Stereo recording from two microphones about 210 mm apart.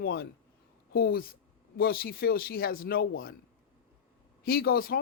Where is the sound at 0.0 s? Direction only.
45° left (ahead or behind).